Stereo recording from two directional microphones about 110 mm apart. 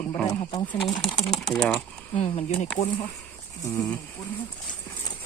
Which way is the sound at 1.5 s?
Centre (ahead or behind).